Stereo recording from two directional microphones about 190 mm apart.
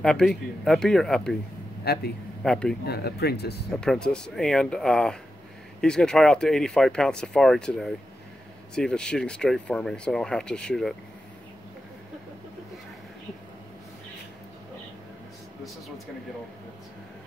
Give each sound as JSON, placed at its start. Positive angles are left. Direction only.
{"t": 0.0, "sound": "speech", "side_deg": 5}
{"t": 1.9, "sound": "speech", "side_deg": 55}
{"t": 2.4, "sound": "speech", "side_deg": 5}
{"t": 2.9, "sound": "speech", "side_deg": 55}
{"t": 3.8, "sound": "speech", "side_deg": 5}